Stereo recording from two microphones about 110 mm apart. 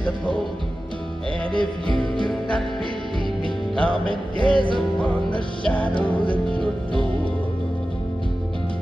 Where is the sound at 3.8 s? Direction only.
10° left (ahead or behind).